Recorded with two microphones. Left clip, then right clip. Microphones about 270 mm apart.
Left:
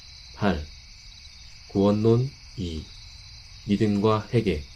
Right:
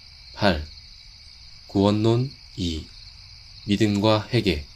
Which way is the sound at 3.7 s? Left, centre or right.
Right.